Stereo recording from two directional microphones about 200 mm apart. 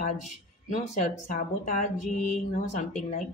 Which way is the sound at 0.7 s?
40° left (ahead or behind).